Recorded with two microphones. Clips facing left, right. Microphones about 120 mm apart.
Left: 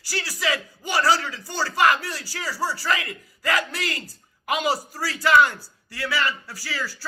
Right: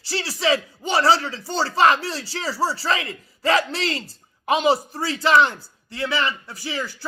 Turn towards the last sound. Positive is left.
turn(degrees=-20)  # may be behind; listen again after turning